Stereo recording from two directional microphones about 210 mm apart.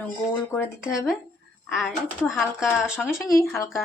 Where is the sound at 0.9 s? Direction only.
Centre (ahead or behind).